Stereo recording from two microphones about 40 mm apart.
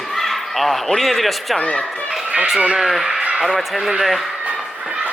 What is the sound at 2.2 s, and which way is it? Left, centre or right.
Run, right.